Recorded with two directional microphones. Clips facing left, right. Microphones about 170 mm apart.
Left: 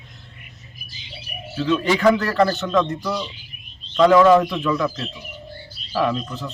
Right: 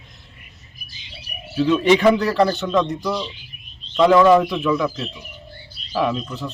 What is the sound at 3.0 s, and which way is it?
A man's voice, centre (ahead or behind).